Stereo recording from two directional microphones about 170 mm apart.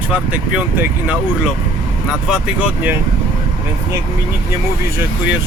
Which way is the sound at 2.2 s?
5° right (ahead or behind).